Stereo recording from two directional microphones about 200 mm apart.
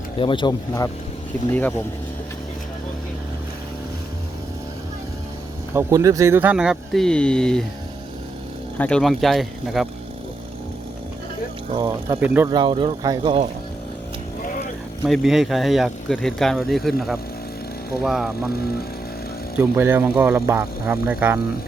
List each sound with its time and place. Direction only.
0.2 s speech: 25° left (ahead or behind)
1.5 s speech: 10° left (ahead or behind)
5.7 s speech: 15° right (ahead or behind); by 7.6 s 5° left (ahead or behind)
8.8 s speech: 5° left (ahead or behind)
11.7 s speech: 20° right (ahead or behind)
12.5 s speech: 25° right (ahead or behind)
15.0 s speech: centre (ahead or behind)
19.5 s speech: 10° right (ahead or behind)